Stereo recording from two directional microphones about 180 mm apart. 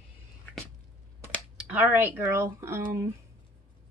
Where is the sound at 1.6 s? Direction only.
10° right (ahead or behind).